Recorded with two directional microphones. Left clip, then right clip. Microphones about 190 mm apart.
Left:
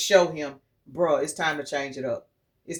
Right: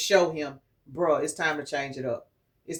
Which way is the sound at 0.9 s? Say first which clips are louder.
Left 2 dB; 30° left (ahead or behind).